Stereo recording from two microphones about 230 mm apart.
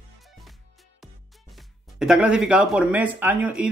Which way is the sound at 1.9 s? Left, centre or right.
Centre.